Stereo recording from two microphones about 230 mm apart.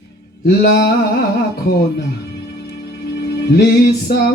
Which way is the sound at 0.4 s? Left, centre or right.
Left.